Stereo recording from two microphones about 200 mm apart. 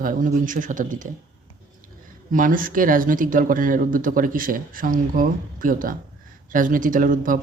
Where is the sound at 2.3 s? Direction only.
45° right (ahead or behind).